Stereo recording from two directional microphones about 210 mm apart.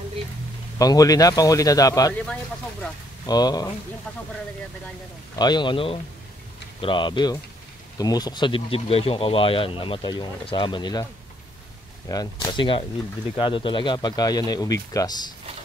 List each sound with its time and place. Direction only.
0.7 s speech: 15° left (ahead or behind)
3.3 s speech: 20° left (ahead or behind)
5.4 s speech: 20° left (ahead or behind)
12.1 s speech: 20° left (ahead or behind)